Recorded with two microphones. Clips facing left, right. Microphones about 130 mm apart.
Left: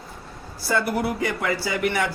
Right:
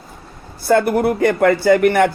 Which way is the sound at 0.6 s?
55° right (ahead or behind).